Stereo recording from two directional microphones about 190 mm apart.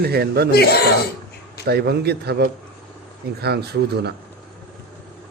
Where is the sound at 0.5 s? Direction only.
55° left (ahead or behind).